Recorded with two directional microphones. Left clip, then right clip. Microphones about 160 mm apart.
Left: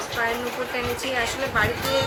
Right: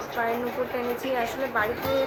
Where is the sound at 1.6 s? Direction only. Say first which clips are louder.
Left 4 dB; centre (ahead or behind).